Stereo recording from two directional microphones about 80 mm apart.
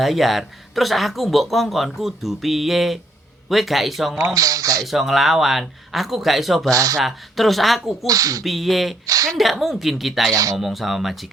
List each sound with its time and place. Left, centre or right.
0.0 s speech: centre
4.4 s speech: right
4.9 s speech: centre
6.7 s speech: right
7.0 s speech: centre
8.0 s speech: right
8.4 s speech: centre
9.0 s speech: right
9.4 s speech: centre